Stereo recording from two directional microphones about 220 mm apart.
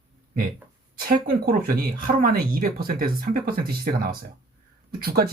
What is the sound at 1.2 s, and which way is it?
Speech, 40° right (ahead or behind).